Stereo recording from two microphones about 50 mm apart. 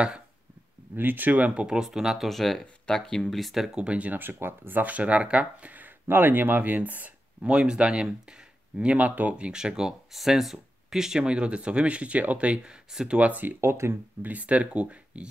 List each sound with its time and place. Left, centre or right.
0.9 s speech: right; by 1.9 s centre
1.9 s speech: centre
3.7 s speech: right
4.1 s speech: right
6.0 s speech: right
7.5 s speech: right
8.9 s speech: right
9.4 s speech: centre
12.9 s speech: centre
13.2 s speech: right
13.6 s speech: right
14.2 s speech: right